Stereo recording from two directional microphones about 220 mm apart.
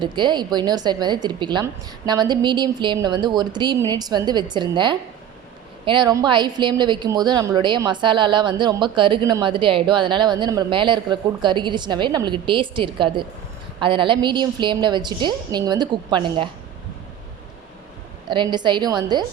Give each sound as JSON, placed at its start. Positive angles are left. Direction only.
{"t": 0.0, "sound": "speech", "side_deg": -20}
{"t": 18.3, "sound": "speech", "side_deg": -20}